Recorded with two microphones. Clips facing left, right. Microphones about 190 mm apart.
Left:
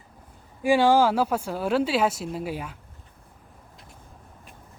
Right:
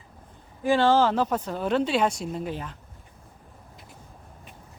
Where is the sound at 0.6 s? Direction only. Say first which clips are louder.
Left 1 dB; 10° left (ahead or behind).